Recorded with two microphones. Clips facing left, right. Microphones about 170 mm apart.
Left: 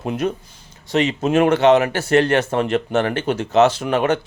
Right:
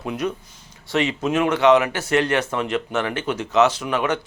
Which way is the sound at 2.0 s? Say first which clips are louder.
Left 4 dB; 30° left (ahead or behind).